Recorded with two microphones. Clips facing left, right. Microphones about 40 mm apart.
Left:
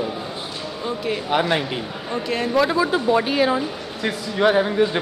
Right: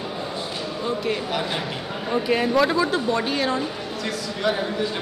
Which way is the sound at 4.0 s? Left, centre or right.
Left.